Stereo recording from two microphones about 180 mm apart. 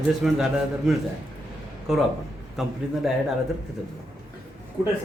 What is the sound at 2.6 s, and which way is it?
Speech, centre (ahead or behind).